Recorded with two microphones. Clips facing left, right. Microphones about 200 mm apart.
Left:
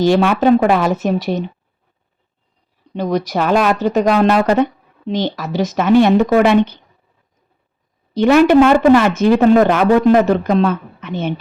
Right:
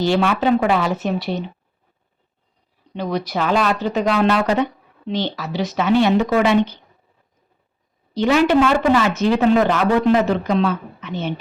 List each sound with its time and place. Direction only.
0.0 s speech: 45° left (ahead or behind)
2.9 s speech: 45° left (ahead or behind)
8.1 s speech: 55° left (ahead or behind)